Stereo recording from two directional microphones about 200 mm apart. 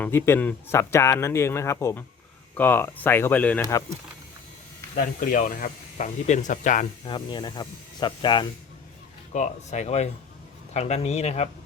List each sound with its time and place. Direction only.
0.0 s speech: 10° left (ahead or behind)
4.9 s speech: 45° left (ahead or behind)
7.1 s speech: 20° left (ahead or behind)
9.3 s speech: 35° left (ahead or behind)